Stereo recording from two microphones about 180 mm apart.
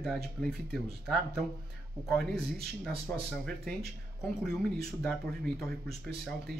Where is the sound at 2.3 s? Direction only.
60° right (ahead or behind).